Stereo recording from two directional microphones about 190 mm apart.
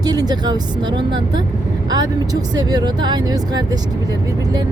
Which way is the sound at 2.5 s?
20° right (ahead or behind).